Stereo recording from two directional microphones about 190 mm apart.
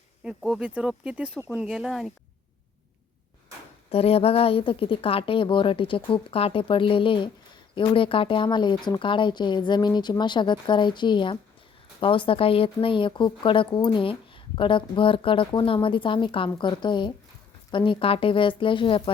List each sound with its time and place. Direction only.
0.3 s speech: centre (ahead or behind)
3.9 s speech: 30° left (ahead or behind)